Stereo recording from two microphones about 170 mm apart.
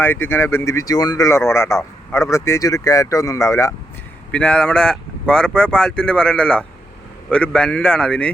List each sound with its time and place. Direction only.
0.0 s speech: 10° left (ahead or behind)
4.3 s speech: 5° left (ahead or behind)